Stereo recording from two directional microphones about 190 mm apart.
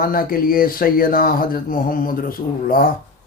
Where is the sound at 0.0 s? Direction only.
50° left (ahead or behind).